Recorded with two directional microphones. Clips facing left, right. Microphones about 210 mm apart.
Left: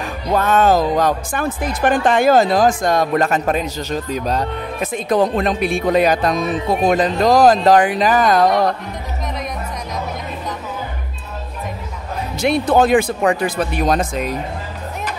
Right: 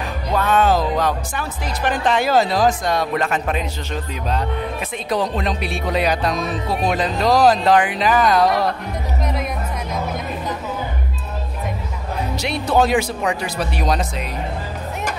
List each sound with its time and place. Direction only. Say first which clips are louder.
0.4 s speech: left 2 dB; 45° left (ahead or behind)
12.4 s speech: left 4 dB; 50° left (ahead or behind)